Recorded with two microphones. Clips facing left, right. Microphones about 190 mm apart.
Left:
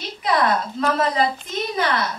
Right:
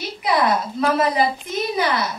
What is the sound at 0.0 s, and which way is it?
A woman's voice, 10° right (ahead or behind).